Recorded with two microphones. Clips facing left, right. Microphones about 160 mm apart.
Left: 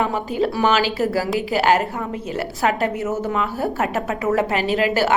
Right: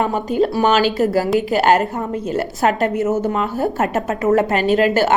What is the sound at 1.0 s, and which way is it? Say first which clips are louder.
Speech: right 4 dB; 20° right (ahead or behind).